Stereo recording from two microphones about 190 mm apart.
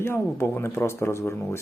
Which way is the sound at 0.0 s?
15° left (ahead or behind).